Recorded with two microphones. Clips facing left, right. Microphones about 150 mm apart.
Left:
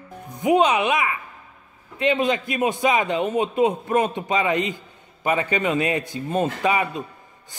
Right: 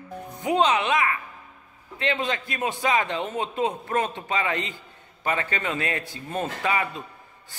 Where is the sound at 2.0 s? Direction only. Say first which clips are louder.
Left 6 dB; 15° left (ahead or behind).